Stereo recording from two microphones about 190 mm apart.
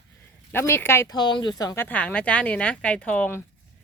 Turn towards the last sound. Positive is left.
turn(degrees=10)  # may be behind; listen again after turning